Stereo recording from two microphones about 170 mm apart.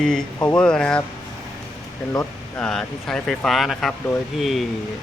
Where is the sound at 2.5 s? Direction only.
5° left (ahead or behind).